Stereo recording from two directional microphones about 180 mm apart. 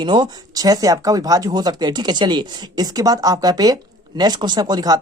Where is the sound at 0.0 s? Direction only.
25° right (ahead or behind).